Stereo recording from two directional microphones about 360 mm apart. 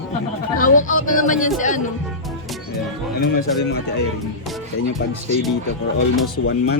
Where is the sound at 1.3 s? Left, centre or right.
Left.